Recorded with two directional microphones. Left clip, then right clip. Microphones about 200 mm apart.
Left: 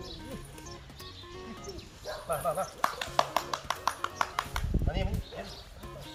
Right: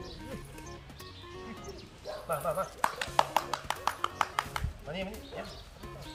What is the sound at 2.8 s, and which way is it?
Music, 20° right (ahead or behind).